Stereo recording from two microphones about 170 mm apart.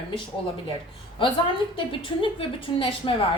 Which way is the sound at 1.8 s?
30° left (ahead or behind).